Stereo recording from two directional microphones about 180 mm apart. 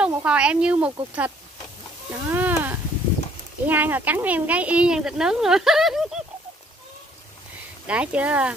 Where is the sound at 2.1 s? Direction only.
10° right (ahead or behind).